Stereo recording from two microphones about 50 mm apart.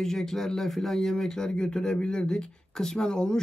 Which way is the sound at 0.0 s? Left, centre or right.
Centre.